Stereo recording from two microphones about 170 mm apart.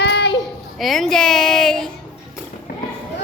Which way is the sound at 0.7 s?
Centre (ahead or behind).